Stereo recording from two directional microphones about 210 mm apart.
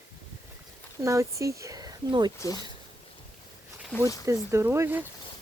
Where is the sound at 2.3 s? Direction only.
15° left (ahead or behind).